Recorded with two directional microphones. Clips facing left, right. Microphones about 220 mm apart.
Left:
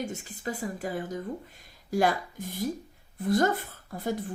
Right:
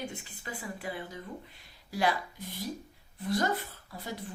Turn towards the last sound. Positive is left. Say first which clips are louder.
# left 8 dB
turn(degrees=50)  # may be behind; listen again after turning